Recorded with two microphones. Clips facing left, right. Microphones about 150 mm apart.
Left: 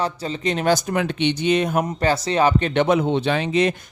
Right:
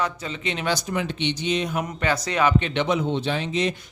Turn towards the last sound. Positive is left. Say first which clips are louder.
# left 5 dB
turn(degrees=60)  # may be behind; listen again after turning